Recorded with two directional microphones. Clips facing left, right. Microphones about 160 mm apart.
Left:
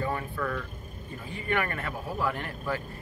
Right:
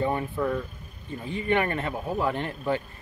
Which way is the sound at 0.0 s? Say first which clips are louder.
Right 5 dB; 25° right (ahead or behind).